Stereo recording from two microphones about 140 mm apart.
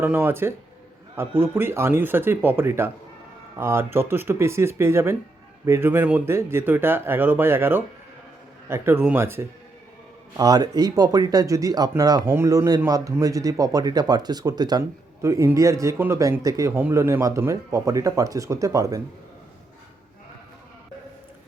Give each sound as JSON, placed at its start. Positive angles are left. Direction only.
{"t": 0.0, "sound": "speech", "side_deg": -15}